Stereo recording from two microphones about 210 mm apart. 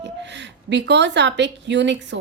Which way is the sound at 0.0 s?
55° right (ahead or behind).